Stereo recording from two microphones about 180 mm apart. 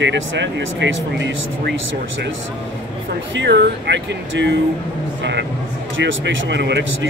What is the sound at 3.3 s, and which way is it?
Speech, 70° right (ahead or behind).